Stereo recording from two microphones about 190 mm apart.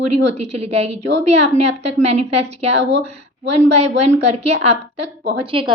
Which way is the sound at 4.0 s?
35° right (ahead or behind).